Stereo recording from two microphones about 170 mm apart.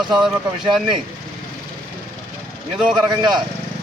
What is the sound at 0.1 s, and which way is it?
Speech, centre (ahead or behind).